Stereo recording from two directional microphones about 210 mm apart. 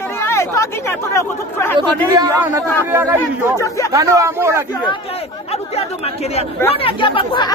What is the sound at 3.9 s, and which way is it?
Speech, 15° right (ahead or behind).